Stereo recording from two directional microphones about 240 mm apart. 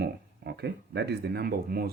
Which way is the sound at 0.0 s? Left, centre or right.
Right.